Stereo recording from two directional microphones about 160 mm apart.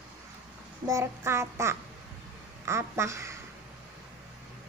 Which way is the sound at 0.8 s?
15° right (ahead or behind).